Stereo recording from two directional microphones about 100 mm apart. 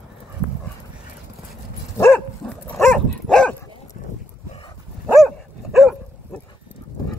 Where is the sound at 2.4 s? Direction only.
10° left (ahead or behind).